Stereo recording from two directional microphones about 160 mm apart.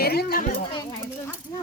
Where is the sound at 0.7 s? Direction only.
30° left (ahead or behind).